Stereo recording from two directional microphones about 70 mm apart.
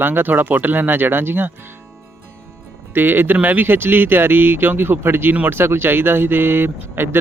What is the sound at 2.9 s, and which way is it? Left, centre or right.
Speech, right.